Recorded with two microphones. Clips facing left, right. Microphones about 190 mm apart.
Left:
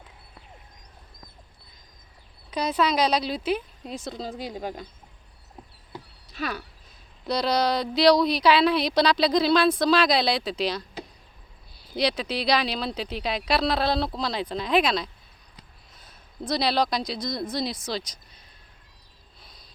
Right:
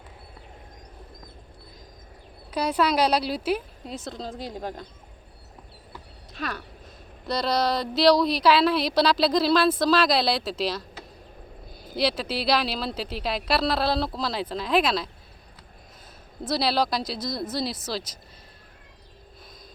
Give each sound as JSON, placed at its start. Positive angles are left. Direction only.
{"t": 2.5, "sound": "speech", "side_deg": -10}
{"t": 5.9, "sound": "horse", "side_deg": 15}
{"t": 6.3, "sound": "speech", "side_deg": 5}
{"t": 11.9, "sound": "speech", "side_deg": -5}
{"t": 16.4, "sound": "speech", "side_deg": -5}